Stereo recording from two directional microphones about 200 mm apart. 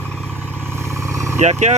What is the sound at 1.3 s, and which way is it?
Speech, 35° right (ahead or behind).